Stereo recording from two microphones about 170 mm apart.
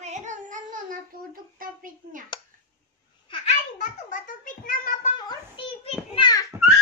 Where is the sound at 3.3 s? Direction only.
45° left (ahead or behind).